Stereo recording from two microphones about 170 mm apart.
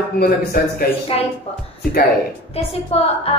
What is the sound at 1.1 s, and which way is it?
Music, 35° left (ahead or behind).